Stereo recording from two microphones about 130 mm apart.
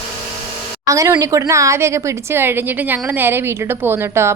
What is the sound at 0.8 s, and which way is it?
A woman's voice, 25° right (ahead or behind).